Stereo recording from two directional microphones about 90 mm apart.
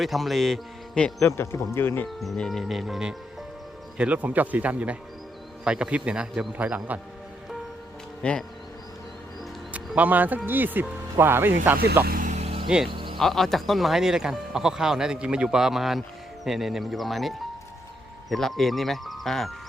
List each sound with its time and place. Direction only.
0.0 s speech: centre (ahead or behind)
1.2 s speech: 25° left (ahead or behind)
2.0 s speech: centre (ahead or behind); by 7.0 s 15° right (ahead or behind)
8.2 s speech: 10° left (ahead or behind)
9.7 s speech: 15° right (ahead or behind)
12.6 s speech: 5° right (ahead or behind)
12.9 s music: 65° right (ahead or behind)
13.1 s speech: 5° left (ahead or behind)